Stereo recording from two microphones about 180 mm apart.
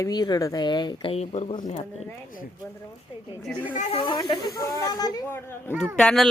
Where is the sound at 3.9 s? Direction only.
30° left (ahead or behind).